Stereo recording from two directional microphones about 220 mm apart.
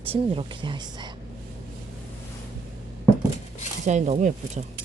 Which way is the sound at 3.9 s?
30° right (ahead or behind).